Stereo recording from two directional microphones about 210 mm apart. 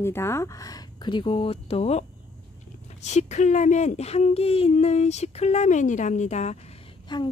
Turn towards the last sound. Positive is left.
turn(degrees=20)  # may be behind; listen again after turning